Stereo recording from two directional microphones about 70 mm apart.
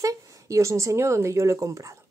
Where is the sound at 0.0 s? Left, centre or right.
Right.